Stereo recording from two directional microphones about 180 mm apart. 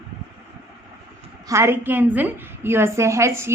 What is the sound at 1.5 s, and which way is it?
A woman's voice, 15° right (ahead or behind).